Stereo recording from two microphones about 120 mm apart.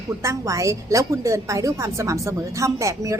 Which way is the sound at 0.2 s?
25° right (ahead or behind).